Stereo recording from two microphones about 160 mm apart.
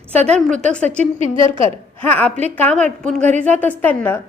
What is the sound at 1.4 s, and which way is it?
Speech, 30° right (ahead or behind).